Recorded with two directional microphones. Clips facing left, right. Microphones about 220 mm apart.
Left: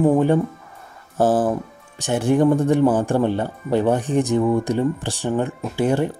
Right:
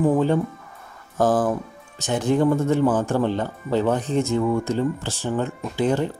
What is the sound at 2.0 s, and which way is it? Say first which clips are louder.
Speech: left 3 dB; 10° left (ahead or behind).